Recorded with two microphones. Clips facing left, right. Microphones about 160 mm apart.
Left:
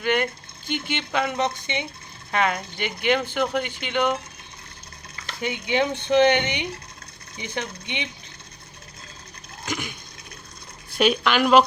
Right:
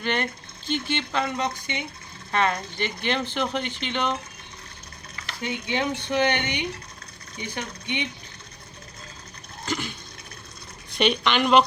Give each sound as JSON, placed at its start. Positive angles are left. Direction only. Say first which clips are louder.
{"t": 0.0, "sound": "speech", "louder": "left 4 dB", "side_deg": 10}
{"t": 2.3, "sound": "speech", "louder": "left 1 dB", "side_deg": 10}
{"t": 5.4, "sound": "speech", "louder": "left 4 dB", "side_deg": 20}
{"t": 9.6, "sound": "a sound", "louder": "right 1 dB", "side_deg": 15}
{"t": 10.9, "sound": "a woman's voice", "louder": "left 2 dB", "side_deg": 5}